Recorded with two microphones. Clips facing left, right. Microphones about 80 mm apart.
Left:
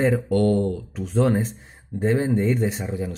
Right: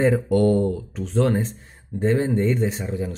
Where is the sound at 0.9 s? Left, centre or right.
Centre.